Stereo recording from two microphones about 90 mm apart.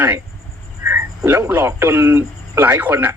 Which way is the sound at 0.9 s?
30° right (ahead or behind).